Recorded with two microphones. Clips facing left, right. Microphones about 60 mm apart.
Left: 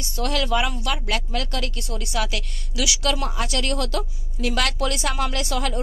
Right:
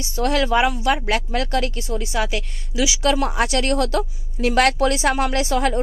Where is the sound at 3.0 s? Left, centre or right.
Right.